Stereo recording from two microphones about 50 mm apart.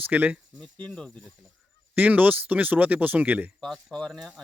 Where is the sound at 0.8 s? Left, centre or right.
Centre.